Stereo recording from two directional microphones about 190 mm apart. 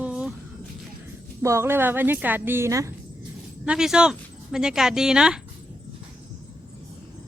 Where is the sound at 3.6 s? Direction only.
5° right (ahead or behind).